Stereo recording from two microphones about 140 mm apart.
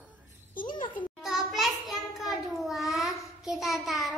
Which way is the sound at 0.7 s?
35° left (ahead or behind).